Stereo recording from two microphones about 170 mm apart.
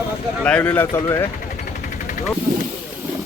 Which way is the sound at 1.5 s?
50° left (ahead or behind).